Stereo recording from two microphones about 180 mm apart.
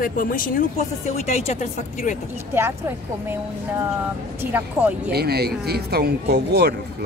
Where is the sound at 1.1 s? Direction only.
35° left (ahead or behind).